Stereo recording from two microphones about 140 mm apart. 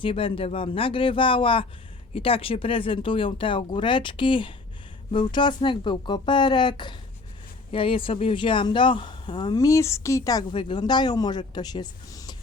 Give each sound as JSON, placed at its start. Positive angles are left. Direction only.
{"t": 0.0, "sound": "speech", "side_deg": 40}
{"t": 9.6, "sound": "speech", "side_deg": 20}